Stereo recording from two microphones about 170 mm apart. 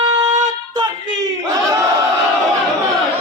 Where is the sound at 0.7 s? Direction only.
25° right (ahead or behind).